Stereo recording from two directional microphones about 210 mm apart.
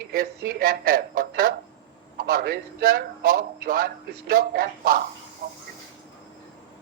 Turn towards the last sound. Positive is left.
turn(degrees=-40)  # may be behind; listen again after turning